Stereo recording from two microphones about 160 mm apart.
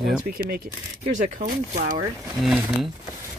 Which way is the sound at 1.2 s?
50° right (ahead or behind).